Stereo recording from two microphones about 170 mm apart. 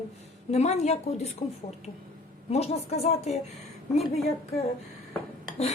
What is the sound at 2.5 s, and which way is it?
A woman's voice, 40° left (ahead or behind).